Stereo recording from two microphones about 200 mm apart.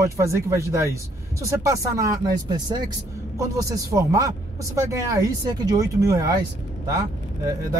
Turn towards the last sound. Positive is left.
turn(degrees=-20)  # may be behind; listen again after turning